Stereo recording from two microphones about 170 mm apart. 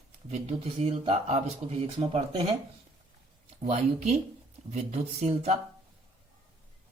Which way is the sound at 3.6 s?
40° right (ahead or behind).